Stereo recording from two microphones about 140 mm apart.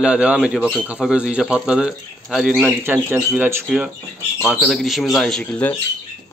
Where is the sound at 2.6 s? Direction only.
15° right (ahead or behind).